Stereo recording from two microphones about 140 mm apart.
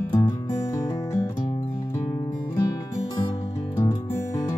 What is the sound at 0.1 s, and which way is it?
Music, 25° left (ahead or behind).